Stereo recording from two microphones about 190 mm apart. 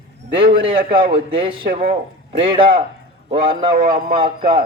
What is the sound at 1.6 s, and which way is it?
Speech, 50° right (ahead or behind).